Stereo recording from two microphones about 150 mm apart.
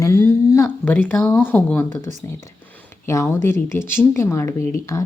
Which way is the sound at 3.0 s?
20° left (ahead or behind).